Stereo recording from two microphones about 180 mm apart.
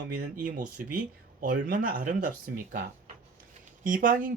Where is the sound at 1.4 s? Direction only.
50° right (ahead or behind).